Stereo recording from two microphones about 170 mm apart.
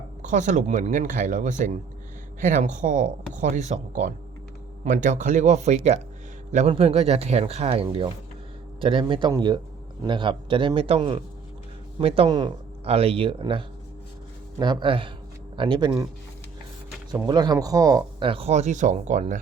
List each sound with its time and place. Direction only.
0.2 s a man's voice: 45° right (ahead or behind); by 15.9 s 30° right (ahead or behind)
17.2 s speech: 25° right (ahead or behind); by 19.4 s 45° right (ahead or behind)